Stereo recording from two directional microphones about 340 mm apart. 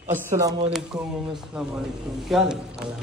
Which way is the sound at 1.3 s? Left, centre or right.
Centre.